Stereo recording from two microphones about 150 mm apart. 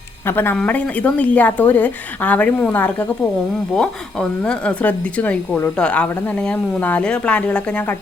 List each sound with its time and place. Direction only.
0.3 s speech: 15° left (ahead or behind)